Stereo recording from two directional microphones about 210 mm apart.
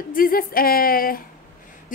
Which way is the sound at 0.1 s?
45° left (ahead or behind).